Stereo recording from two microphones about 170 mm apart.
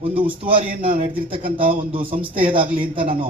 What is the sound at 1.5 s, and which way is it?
Speech, 30° right (ahead or behind).